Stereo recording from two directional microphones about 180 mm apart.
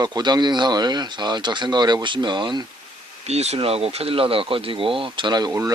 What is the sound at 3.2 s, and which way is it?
Speech, 35° right (ahead or behind).